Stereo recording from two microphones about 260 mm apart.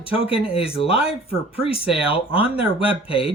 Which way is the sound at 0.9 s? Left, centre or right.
Centre.